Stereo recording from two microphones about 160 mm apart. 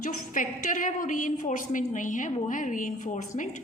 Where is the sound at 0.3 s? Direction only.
55° left (ahead or behind).